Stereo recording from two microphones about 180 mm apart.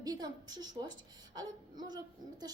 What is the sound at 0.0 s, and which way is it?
Speech, 20° right (ahead or behind).